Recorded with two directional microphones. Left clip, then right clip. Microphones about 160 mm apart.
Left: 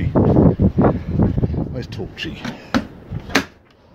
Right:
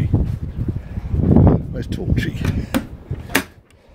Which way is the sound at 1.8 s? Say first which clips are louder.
Right 2 dB; 40° right (ahead or behind).